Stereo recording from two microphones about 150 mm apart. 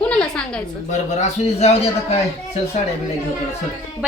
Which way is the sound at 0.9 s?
50° left (ahead or behind).